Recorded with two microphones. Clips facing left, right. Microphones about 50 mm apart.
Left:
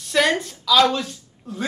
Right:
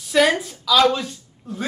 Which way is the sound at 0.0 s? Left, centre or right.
Centre.